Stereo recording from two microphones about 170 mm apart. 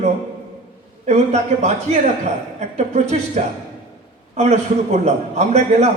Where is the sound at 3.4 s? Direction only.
45° right (ahead or behind).